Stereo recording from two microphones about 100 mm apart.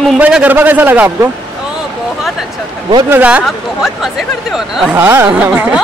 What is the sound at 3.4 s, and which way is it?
Speech, centre (ahead or behind).